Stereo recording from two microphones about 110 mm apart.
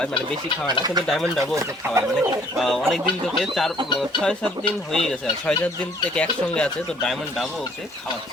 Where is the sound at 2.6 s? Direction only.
Centre (ahead or behind).